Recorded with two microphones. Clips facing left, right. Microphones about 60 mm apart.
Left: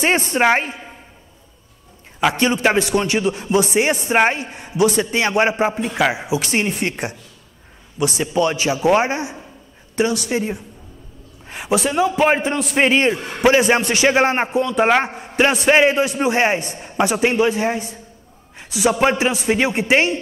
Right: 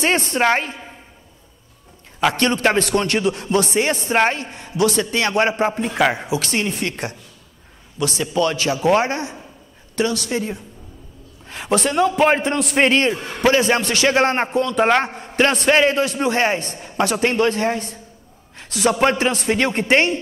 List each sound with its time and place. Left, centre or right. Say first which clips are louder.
0.0 s speech: left 1 dB; centre
2.2 s a man's voice: left 1 dB; centre
6.2 s a man's voice: left 2 dB; centre
11.6 s a man's voice: even; centre